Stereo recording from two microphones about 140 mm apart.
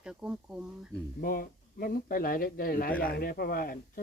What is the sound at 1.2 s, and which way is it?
Speech, 90° left.